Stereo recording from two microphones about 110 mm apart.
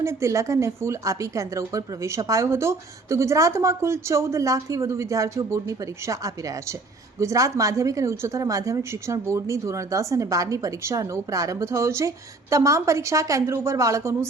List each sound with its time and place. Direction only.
0.0 s a woman's voice: 25° right (ahead or behind)